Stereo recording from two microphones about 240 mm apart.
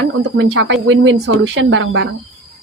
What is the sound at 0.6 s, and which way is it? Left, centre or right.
Speech, right.